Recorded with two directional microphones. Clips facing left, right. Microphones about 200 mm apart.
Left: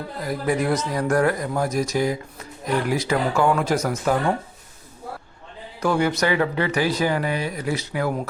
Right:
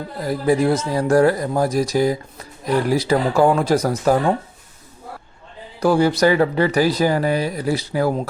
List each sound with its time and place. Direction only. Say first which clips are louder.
0.3 s speech: right 5 dB; 30° right (ahead or behind)
5.8 s speech: right 6 dB; 35° right (ahead or behind)